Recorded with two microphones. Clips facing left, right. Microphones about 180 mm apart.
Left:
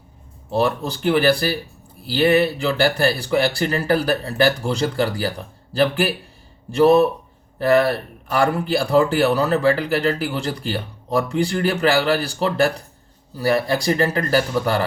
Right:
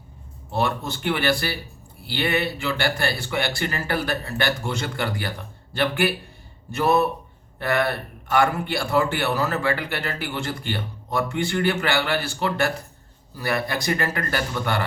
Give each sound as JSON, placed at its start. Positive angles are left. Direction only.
{"t": 0.6, "sound": "a man's voice", "side_deg": 35}
{"t": 6.7, "sound": "a man's voice", "side_deg": 30}